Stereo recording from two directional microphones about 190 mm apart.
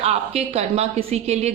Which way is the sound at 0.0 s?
35° right (ahead or behind).